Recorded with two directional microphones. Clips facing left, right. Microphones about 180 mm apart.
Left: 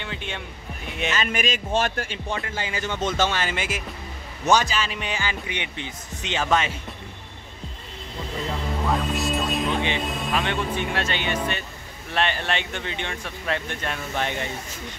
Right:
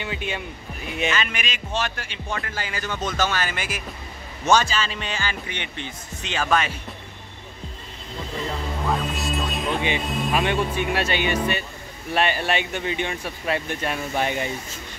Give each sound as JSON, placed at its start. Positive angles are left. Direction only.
{"t": 0.0, "sound": "speech", "side_deg": -10}
{"t": 1.1, "sound": "speech", "side_deg": 45}
{"t": 2.3, "sound": "speech", "side_deg": 20}
{"t": 8.8, "sound": "speech", "side_deg": 0}
{"t": 10.3, "sound": "speech", "side_deg": -10}